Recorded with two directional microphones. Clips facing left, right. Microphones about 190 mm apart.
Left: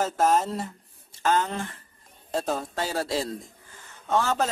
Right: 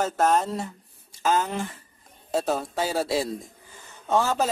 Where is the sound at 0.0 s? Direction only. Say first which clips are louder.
Even; centre (ahead or behind).